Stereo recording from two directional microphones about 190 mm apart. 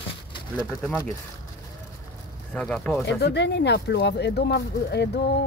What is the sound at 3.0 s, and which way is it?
Speech, 65° left (ahead or behind).